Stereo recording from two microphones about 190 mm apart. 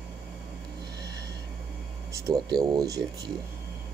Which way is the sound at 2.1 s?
15° right (ahead or behind).